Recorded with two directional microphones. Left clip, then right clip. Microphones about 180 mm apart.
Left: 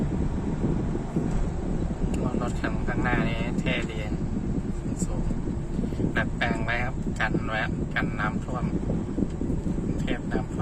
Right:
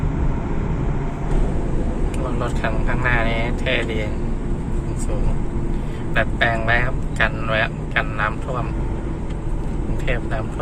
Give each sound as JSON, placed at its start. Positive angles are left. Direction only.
{"t": 3.0, "sound": "speech", "side_deg": 20}
{"t": 6.1, "sound": "speech", "side_deg": 15}